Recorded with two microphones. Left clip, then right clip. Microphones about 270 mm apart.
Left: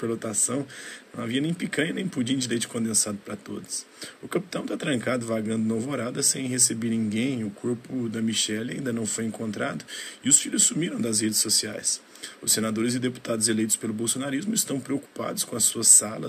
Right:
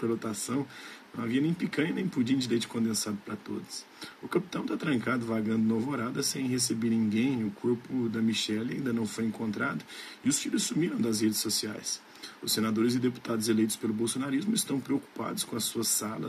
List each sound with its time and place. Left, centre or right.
0.2 s speech: centre